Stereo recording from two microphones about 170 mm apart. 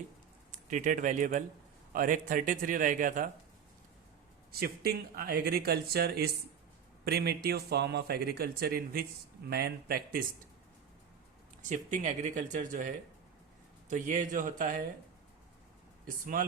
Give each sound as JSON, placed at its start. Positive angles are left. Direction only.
{"t": 0.5, "sound": "a man's voice", "side_deg": -50}
{"t": 4.6, "sound": "speech", "side_deg": -65}
{"t": 11.7, "sound": "a man's voice", "side_deg": -45}
{"t": 13.9, "sound": "a man's voice", "side_deg": -50}
{"t": 16.0, "sound": "a man's voice", "side_deg": -55}